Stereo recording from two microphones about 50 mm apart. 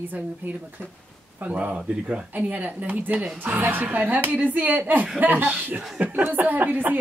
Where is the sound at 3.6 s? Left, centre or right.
Right.